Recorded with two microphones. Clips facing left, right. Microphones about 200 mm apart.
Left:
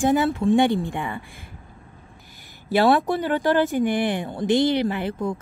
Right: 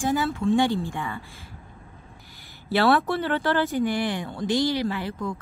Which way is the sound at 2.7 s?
15° left (ahead or behind).